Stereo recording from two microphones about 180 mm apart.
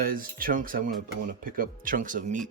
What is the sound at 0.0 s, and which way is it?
Speech, 55° right (ahead or behind).